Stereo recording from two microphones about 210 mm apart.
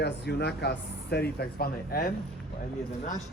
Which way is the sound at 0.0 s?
50° left (ahead or behind).